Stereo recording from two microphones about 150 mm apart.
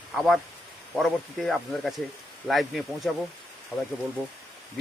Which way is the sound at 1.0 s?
Centre (ahead or behind).